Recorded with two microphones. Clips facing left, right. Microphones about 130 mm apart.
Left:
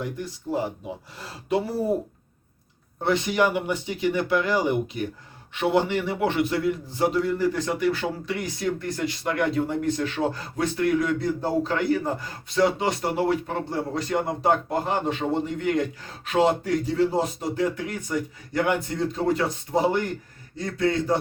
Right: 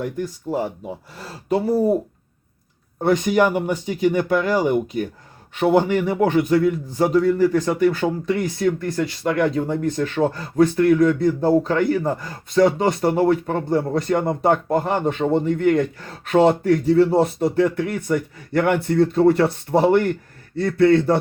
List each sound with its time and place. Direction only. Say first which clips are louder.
1.5 s a man's voice: right 6 dB; 40° right (ahead or behind)
3.0 s a man's voice: right 5 dB; 50° right (ahead or behind)
5.5 s a man's voice: right 5 dB; 45° right (ahead or behind); by 21.2 s 65° right (ahead or behind)